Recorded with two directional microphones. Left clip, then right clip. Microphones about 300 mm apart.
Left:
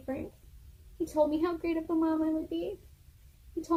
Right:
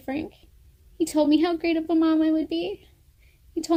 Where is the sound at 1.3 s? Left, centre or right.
Right.